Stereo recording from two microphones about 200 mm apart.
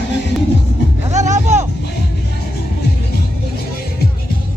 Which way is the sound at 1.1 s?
35° right (ahead or behind).